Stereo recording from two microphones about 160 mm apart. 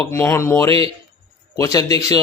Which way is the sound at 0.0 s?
15° left (ahead or behind).